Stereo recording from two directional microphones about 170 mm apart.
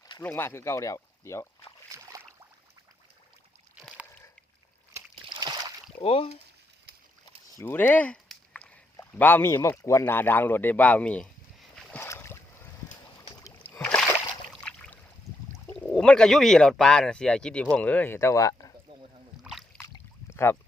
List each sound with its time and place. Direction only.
0.2 s speech: 15° left (ahead or behind)
1.9 s boat: 20° right (ahead or behind)
3.8 s a sound: 5° right (ahead or behind)
5.2 s a sound: 25° right (ahead or behind)
6.0 s speech: 35° left (ahead or behind)
7.6 s speech: 10° left (ahead or behind)
11.8 s boat: 10° left (ahead or behind)
13.7 s rowboat: 10° left (ahead or behind)
15.9 s speech: 5° left (ahead or behind)
19.5 s boat: centre (ahead or behind)
20.3 s boat: 15° left (ahead or behind)